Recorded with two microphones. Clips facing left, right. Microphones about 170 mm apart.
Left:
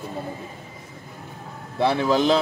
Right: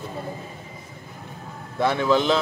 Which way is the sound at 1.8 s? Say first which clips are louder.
Left 1 dB; 35° left (ahead or behind).